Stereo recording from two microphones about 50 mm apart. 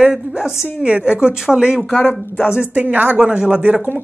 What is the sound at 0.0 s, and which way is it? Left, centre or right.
Speech, centre.